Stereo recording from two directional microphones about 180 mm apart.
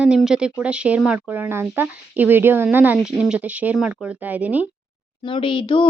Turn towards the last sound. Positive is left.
turn(degrees=30)  # may be behind; listen again after turning